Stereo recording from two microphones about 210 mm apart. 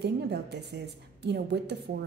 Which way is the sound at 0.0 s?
50° right (ahead or behind).